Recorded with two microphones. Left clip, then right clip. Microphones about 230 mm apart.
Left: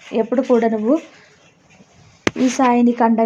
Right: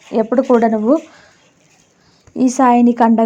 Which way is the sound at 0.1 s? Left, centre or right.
Right.